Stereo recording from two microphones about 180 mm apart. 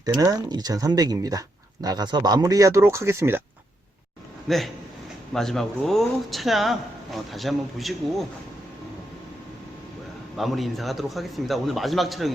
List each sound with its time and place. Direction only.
0.0 s speech: 20° right (ahead or behind)
4.4 s speech: centre (ahead or behind)
10.3 s speech: centre (ahead or behind)